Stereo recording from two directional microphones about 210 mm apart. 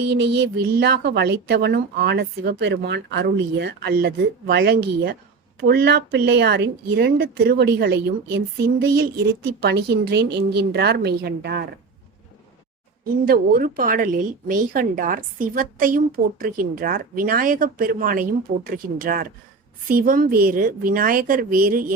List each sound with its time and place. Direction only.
0.1 s speech: 55° right (ahead or behind)
13.1 s a woman's voice: 45° right (ahead or behind)